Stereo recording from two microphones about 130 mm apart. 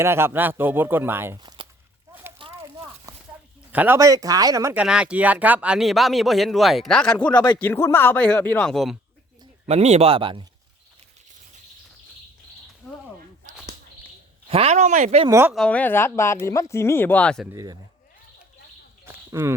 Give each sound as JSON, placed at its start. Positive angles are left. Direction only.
{"t": 0.0, "sound": "speech", "side_deg": -20}
{"t": 1.4, "sound": "walk", "side_deg": -35}
{"t": 2.4, "sound": "a sound", "side_deg": -40}
{"t": 3.1, "sound": "a sound", "side_deg": -25}
{"t": 3.7, "sound": "speech", "side_deg": -15}
{"t": 4.7, "sound": "speech", "side_deg": -10}
{"t": 7.3, "sound": "speech", "side_deg": 30}
{"t": 7.6, "sound": "speech", "side_deg": 20}
{"t": 9.6, "sound": "speech", "side_deg": -55}
{"t": 14.4, "sound": "speech", "side_deg": -50}
{"t": 15.3, "sound": "speech", "side_deg": -20}
{"t": 15.5, "sound": "speech", "side_deg": 10}
{"t": 17.5, "sound": "speech", "side_deg": -25}
{"t": 19.0, "sound": "a sound", "side_deg": -20}